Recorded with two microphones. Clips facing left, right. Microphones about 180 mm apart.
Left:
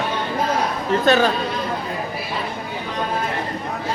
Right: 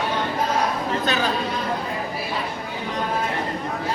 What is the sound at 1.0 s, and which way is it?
Speech, 45° left (ahead or behind).